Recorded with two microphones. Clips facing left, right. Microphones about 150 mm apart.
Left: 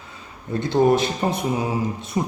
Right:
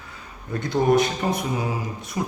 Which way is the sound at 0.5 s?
25° left (ahead or behind).